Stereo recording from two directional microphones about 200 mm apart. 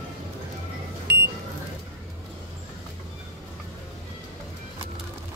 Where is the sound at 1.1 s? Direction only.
55° right (ahead or behind).